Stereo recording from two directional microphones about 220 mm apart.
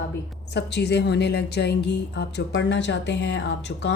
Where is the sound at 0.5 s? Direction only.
50° left (ahead or behind).